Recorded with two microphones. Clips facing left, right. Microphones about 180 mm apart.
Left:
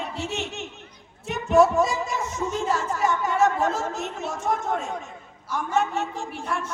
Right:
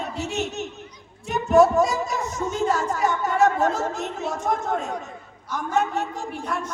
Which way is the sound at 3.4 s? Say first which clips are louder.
Right 3 dB; 45° right (ahead or behind).